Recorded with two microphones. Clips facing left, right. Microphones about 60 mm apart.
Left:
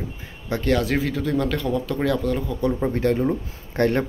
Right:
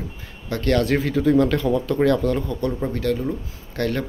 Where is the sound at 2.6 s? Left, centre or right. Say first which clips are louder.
Left 2 dB; centre.